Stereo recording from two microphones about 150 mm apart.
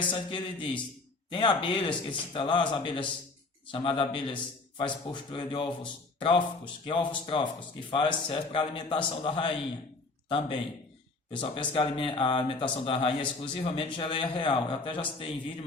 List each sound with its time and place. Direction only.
0.1 s speech: 35° left (ahead or behind)